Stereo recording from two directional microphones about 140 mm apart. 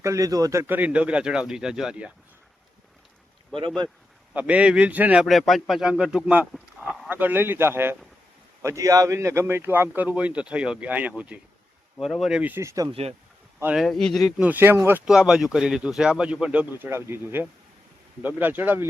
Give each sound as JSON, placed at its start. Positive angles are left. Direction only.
{"t": 0.0, "sound": "speech", "side_deg": -25}
{"t": 4.4, "sound": "speech", "side_deg": -10}
{"t": 5.2, "sound": "speech", "side_deg": 0}
{"t": 7.1, "sound": "speech", "side_deg": -15}
{"t": 12.4, "sound": "speech", "side_deg": -15}
{"t": 12.9, "sound": "speech", "side_deg": -45}
{"t": 13.7, "sound": "speech", "side_deg": 5}
{"t": 15.0, "sound": "speech", "side_deg": -5}